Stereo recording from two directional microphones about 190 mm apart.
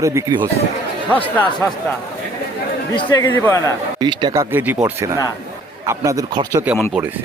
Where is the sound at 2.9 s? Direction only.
20° left (ahead or behind).